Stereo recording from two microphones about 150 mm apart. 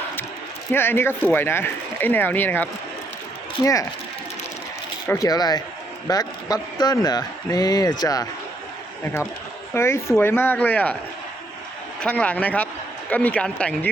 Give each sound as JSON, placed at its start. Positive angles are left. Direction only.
{"t": 0.7, "sound": "speech", "side_deg": 15}
{"t": 5.0, "sound": "speech", "side_deg": 20}
{"t": 9.7, "sound": "speech", "side_deg": 15}
{"t": 11.9, "sound": "speech", "side_deg": 5}